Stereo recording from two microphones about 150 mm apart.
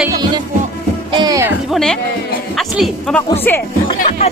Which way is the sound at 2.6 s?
Centre (ahead or behind).